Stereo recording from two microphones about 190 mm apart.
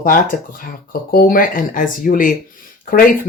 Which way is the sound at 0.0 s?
50° left (ahead or behind).